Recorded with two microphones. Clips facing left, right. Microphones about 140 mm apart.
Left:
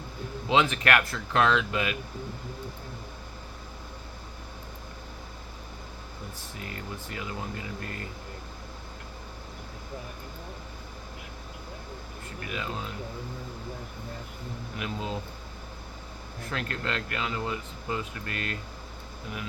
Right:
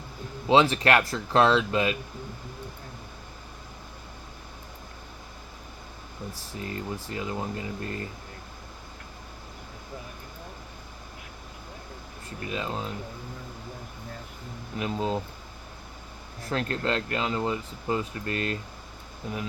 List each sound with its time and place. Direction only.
0.4 s speech: 35° right (ahead or behind)
6.7 s speech: 30° right (ahead or behind)
12.5 s speech: 30° right (ahead or behind)
14.8 s speech: 35° right (ahead or behind)
16.5 s speech: 35° right (ahead or behind)